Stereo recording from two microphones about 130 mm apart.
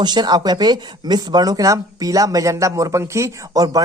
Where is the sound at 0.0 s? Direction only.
35° right (ahead or behind).